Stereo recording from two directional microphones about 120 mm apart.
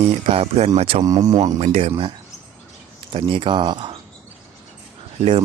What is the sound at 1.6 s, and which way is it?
Speech, 60° right (ahead or behind).